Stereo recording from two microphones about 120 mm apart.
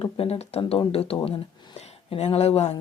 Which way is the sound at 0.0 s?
55° left (ahead or behind).